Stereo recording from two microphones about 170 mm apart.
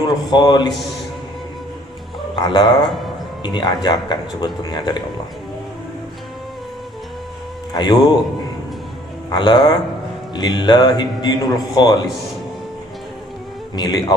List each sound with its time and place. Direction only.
0.0 s a man's voice: 25° left (ahead or behind)
2.3 s a man's voice: 25° left (ahead or behind)
7.7 s a man's voice: 25° left (ahead or behind)
9.3 s a man's voice: 25° left (ahead or behind)
13.7 s a man's voice: 25° left (ahead or behind)